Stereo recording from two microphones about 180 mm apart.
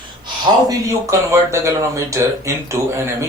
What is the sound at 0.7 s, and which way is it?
Speech, 15° right (ahead or behind).